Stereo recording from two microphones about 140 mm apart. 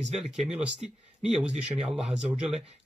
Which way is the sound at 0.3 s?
5° right (ahead or behind).